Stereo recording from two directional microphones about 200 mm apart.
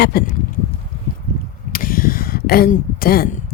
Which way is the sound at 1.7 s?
45° left (ahead or behind).